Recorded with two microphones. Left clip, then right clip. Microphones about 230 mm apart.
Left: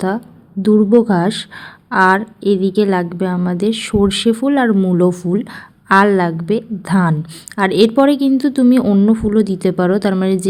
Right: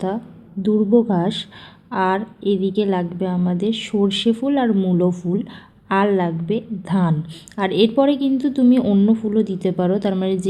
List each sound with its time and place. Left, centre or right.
0.6 s a woman's voice: left